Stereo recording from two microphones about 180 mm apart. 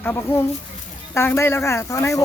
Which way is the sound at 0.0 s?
10° left (ahead or behind).